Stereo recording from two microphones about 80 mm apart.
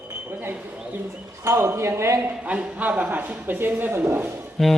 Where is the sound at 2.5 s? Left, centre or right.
Centre.